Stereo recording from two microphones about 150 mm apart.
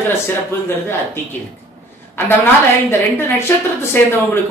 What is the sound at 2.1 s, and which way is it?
Speech, 15° left (ahead or behind).